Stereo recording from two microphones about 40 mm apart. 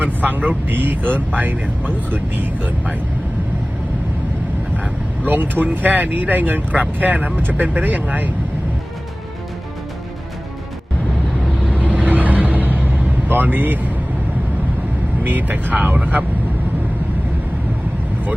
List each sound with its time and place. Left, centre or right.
0.0 s speech: right
5.2 s speech: right
11.7 s vehicle: right
13.2 s speech: right
15.2 s speech: right